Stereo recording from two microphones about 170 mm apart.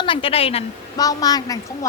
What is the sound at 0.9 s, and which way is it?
Speech, 20° left (ahead or behind).